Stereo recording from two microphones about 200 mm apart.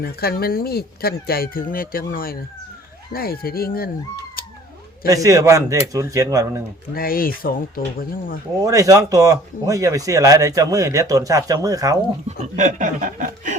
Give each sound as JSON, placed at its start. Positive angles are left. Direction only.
{"t": 0.0, "sound": "speech", "side_deg": 50}
{"t": 4.4, "sound": "cat", "side_deg": 45}
{"t": 5.0, "sound": "speech", "side_deg": -15}
{"t": 6.9, "sound": "speech", "side_deg": 45}
{"t": 8.5, "sound": "speech", "side_deg": -15}
{"t": 12.4, "sound": "speech", "side_deg": -40}